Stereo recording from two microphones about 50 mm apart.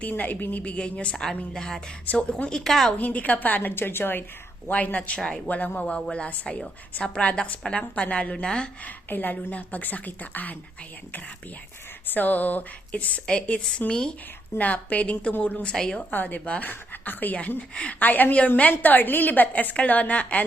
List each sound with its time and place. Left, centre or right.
0.0 s a woman's voice: left
0.6 s speech: left
1.1 s a woman's voice: centre
3.0 s a woman's voice: left
3.8 s a woman's voice: left
4.7 s speech: left
5.5 s speech: left
9.0 s a woman's voice: left
12.1 s a woman's voice: left; by 14.1 s centre
14.6 s a woman's voice: left
15.7 s a woman's voice: centre
16.1 s a woman's voice: left
18.0 s a woman's voice: left